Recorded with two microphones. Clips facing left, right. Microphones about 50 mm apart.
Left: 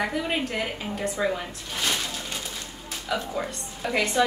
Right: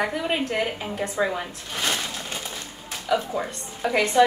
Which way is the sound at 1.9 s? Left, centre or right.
Centre.